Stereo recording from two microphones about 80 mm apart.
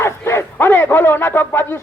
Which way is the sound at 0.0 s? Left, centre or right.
Left.